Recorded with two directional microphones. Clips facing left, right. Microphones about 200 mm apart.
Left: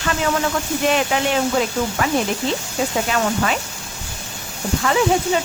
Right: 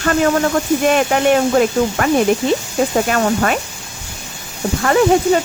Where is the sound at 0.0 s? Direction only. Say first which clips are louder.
Right 6 dB; 50° right (ahead or behind).